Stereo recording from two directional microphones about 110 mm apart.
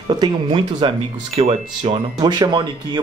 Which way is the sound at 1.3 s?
65° right (ahead or behind).